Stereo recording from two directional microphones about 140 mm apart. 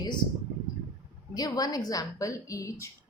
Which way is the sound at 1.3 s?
30° left (ahead or behind).